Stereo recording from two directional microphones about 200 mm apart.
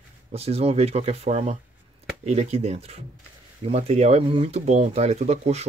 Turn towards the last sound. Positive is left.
turn(degrees=-30)  # may be behind; listen again after turning